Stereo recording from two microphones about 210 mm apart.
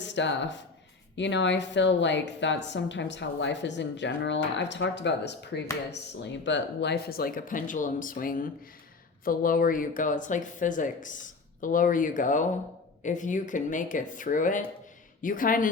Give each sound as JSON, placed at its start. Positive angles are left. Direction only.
{"t": 0.0, "sound": "speech", "side_deg": 55}